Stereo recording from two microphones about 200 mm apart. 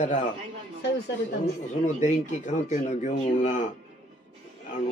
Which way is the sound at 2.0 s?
35° left (ahead or behind).